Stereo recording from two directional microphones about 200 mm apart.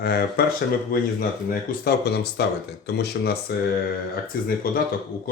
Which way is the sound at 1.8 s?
55° left (ahead or behind).